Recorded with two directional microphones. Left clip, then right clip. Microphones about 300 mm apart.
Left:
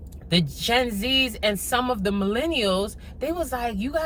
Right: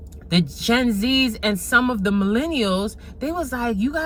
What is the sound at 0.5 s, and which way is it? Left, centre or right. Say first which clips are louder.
A woman's voice: right 4 dB; centre.